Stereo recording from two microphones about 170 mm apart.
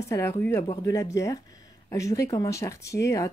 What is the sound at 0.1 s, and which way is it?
Speech, 15° left (ahead or behind).